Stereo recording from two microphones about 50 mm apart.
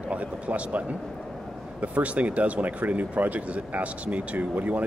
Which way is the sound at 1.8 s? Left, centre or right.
Right.